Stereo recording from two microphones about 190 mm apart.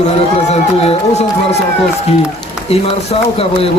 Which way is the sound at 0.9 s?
35° left (ahead or behind).